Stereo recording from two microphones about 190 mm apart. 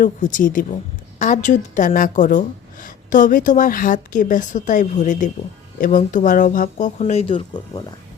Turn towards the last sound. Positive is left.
turn(degrees=35)  # may be behind; listen again after turning